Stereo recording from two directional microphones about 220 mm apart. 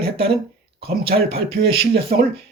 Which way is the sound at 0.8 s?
45° right (ahead or behind).